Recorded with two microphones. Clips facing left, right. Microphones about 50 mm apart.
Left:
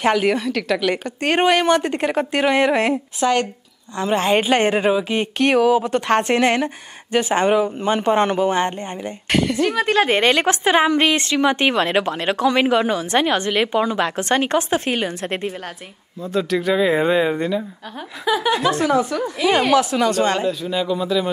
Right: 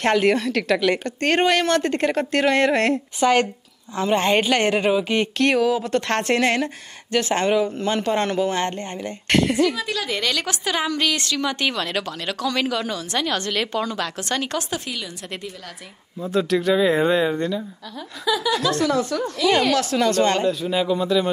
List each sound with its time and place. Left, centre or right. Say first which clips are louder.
0.0 s a woman's voice: left 1 dB; centre
4.0 s a woman's voice: left 1 dB; centre
9.6 s a woman's voice: left 4 dB; left
14.9 s a woman's voice: left 9 dB; left
16.2 s a woman's voice: even; centre
18.2 s a woman's voice: left 3 dB; left
18.5 s a woman's voice: left 3 dB; left
20.6 s a man's voice: even; centre